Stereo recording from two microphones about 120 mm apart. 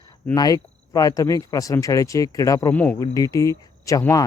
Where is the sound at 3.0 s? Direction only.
25° left (ahead or behind).